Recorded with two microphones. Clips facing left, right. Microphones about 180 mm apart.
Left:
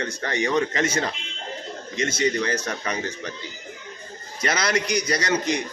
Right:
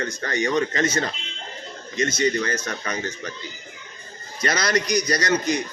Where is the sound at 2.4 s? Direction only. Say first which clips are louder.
Left 1 dB; 15° left (ahead or behind).